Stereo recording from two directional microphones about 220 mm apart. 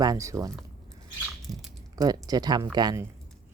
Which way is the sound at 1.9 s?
15° right (ahead or behind).